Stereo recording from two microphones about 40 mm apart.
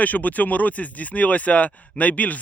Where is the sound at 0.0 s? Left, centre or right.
Left.